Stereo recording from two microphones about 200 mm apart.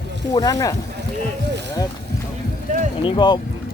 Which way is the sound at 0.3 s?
20° left (ahead or behind).